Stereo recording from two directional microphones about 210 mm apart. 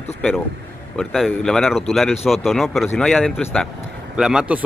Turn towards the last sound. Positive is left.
turn(degrees=-5)  # may be behind; listen again after turning